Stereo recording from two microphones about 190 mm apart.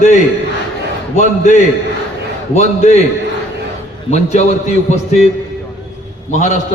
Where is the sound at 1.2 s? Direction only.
40° left (ahead or behind).